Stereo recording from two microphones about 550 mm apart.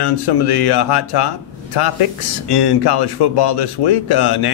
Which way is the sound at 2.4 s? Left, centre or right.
Left.